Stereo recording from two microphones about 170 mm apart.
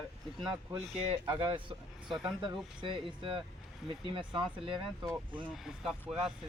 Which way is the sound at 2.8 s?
30° right (ahead or behind).